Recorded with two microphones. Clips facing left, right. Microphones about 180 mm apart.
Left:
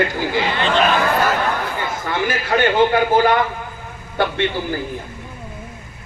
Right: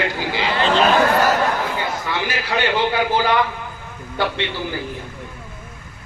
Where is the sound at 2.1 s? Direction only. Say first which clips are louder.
Left 3 dB; 50° left (ahead or behind).